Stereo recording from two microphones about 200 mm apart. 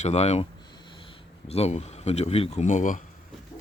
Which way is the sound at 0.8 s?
25° left (ahead or behind).